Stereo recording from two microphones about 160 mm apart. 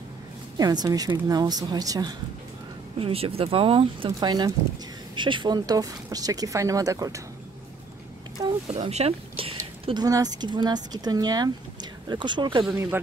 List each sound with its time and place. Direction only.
0.6 s speech: 25° right (ahead or behind)
3.0 s speech: 35° right (ahead or behind); by 7.2 s 20° right (ahead or behind)
8.4 s speech: 25° right (ahead or behind)
8.7 s a sound: 40° right (ahead or behind)
10.0 s speech: 25° right (ahead or behind)